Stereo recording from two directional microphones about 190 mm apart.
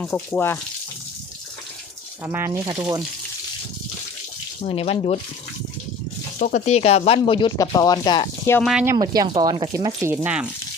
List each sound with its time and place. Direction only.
0.0 s speech: 10° left (ahead or behind)
2.2 s speech: 10° right (ahead or behind)
4.6 s speech: 30° left (ahead or behind)
6.4 s speech: 40° left (ahead or behind); by 8.5 s 20° left (ahead or behind)
8.6 s speech: 10° right (ahead or behind)
9.0 s speech: 20° right (ahead or behind)